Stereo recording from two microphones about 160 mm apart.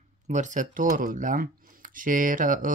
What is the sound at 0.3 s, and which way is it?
Speech, 50° right (ahead or behind).